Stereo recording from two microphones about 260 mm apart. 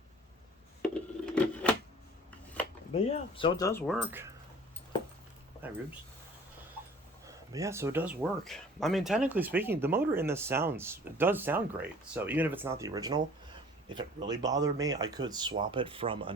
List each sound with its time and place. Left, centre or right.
0.8 s telephone: centre
2.9 s speech: left
3.7 s speech: centre
3.9 s speech: centre
5.6 s speech: centre
7.3 s speech: centre